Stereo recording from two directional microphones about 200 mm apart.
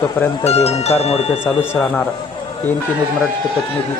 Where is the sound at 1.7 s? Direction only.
5° left (ahead or behind).